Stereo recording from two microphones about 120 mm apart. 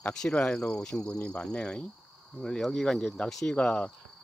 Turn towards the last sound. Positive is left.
turn(degrees=10)  # may be behind; listen again after turning